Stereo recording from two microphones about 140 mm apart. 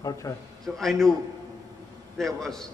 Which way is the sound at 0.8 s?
Centre (ahead or behind).